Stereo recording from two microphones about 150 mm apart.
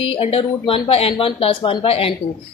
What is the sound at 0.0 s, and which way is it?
Speech, 40° left (ahead or behind).